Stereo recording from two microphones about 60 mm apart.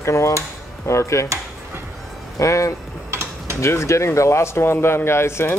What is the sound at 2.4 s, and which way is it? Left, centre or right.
Speech, left.